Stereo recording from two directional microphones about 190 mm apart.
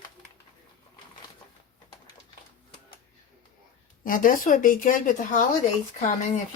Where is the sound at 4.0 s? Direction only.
45° left (ahead or behind).